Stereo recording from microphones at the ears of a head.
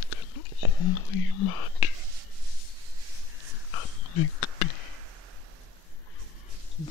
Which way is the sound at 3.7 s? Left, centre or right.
Left.